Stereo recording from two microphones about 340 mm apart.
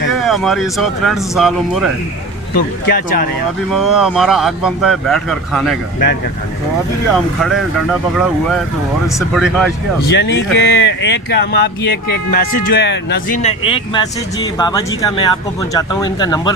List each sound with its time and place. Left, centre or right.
0.1 s speech: centre
2.6 s speech: left
3.7 s speech: centre
7.1 s speech: centre
9.1 s speech: centre
10.1 s speech: left; by 16.5 s centre